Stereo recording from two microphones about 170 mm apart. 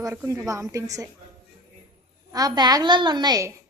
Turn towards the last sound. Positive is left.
turn(degrees=-20)  # may be behind; listen again after turning